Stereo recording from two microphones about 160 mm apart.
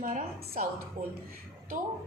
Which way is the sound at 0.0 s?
60° right (ahead or behind).